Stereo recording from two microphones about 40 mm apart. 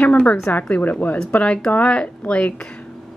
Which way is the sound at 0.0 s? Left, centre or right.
Left.